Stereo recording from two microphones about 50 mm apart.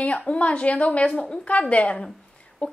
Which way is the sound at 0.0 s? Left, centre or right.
Left.